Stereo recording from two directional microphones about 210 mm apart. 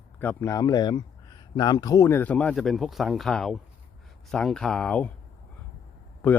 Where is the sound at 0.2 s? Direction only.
10° left (ahead or behind).